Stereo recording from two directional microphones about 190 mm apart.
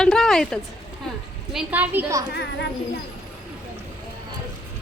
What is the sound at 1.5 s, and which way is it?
Speech, 10° right (ahead or behind).